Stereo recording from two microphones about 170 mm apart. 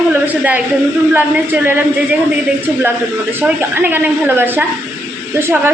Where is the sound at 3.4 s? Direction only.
10° right (ahead or behind).